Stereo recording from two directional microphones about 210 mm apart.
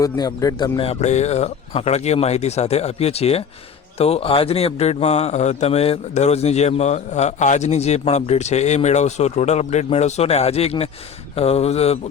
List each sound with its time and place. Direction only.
0.0 s speech: 15° left (ahead or behind)